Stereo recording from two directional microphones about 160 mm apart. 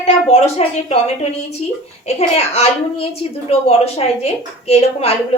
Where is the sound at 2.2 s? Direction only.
40° left (ahead or behind).